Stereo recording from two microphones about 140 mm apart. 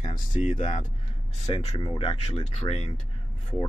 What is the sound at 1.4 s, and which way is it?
Speech, 50° left (ahead or behind).